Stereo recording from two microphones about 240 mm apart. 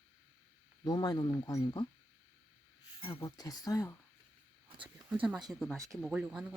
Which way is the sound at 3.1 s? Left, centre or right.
Centre.